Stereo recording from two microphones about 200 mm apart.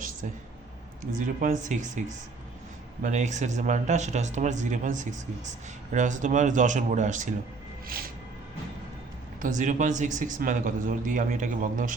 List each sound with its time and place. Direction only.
1.1 s music: 45° right (ahead or behind)
1.6 s speech: 40° right (ahead or behind)
7.9 s music: 45° right (ahead or behind)
9.4 s speech: 40° right (ahead or behind)